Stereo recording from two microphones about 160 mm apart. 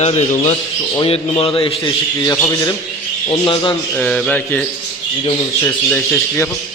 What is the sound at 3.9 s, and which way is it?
Speech, 5° left (ahead or behind).